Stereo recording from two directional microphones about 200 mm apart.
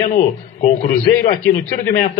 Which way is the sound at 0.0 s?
40° left (ahead or behind).